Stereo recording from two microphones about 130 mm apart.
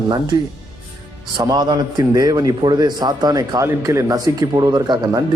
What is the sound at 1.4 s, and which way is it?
A man's voice, 30° right (ahead or behind).